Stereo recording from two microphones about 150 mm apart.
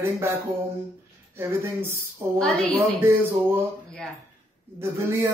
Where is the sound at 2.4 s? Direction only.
Centre (ahead or behind).